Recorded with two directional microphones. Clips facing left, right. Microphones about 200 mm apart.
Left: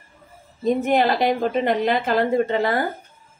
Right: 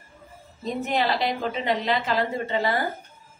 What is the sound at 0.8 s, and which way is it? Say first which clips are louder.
A woman's voice: left 4 dB; 50° left (ahead or behind).